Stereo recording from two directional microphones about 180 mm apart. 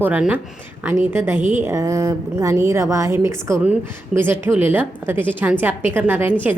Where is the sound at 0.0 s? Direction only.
10° right (ahead or behind).